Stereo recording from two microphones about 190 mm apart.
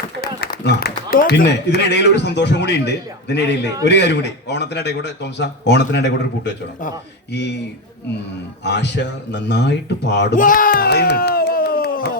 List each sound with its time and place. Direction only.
0.2 s a man's voice: 55° left (ahead or behind)
8.6 s a man's voice: 60° left (ahead or behind)
10.3 s a sound: 45° left (ahead or behind)